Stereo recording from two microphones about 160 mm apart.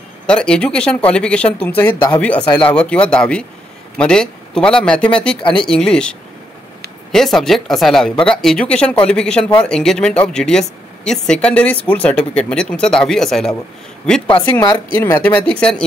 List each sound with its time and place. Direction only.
0.3 s speech: 5° left (ahead or behind)
5.4 s speech: 30° left (ahead or behind)
5.7 s speech: 5° left (ahead or behind)
14.5 s speech: 20° left (ahead or behind)